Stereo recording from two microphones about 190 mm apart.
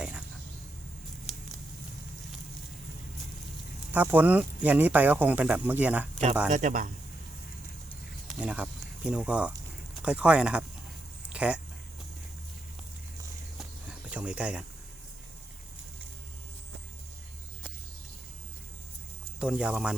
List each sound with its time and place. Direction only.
3.9 s speech: 10° right (ahead or behind)
6.5 s a man's voice: 40° right (ahead or behind)
8.3 s speech: 5° right (ahead or behind)
14.1 s speech: 5° right (ahead or behind)
19.4 s speech: 5° right (ahead or behind)